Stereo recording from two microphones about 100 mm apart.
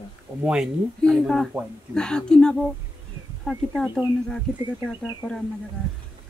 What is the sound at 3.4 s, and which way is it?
Speech, 15° right (ahead or behind).